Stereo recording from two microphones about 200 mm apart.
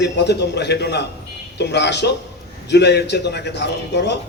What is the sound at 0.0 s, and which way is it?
A man's voice, 55° left (ahead or behind).